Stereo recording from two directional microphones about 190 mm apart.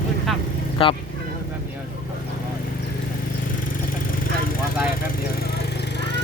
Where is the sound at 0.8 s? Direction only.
30° left (ahead or behind).